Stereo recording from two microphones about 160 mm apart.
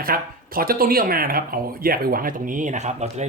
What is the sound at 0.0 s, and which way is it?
Speech, 65° right (ahead or behind).